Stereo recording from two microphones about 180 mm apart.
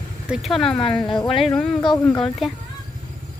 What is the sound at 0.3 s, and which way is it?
Speech, centre (ahead or behind).